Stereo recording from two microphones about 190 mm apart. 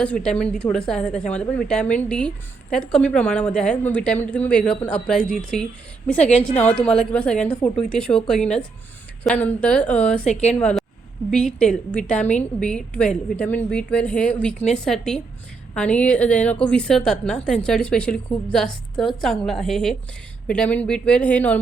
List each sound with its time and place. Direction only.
0.0 s a woman's voice: 5° left (ahead or behind)
6.2 s a woman's voice: 35° left (ahead or behind)
6.6 s a woman's voice: 5° left (ahead or behind)